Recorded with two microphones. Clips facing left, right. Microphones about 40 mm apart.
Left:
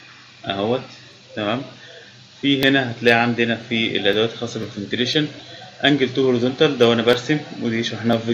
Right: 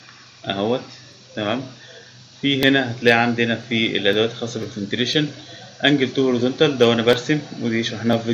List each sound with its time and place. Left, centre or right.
0.5 s a man's voice: centre
7.3 s speech: left
7.6 s speech: centre